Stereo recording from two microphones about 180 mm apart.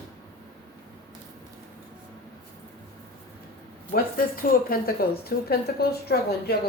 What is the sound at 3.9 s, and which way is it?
A woman's voice, 55° left (ahead or behind).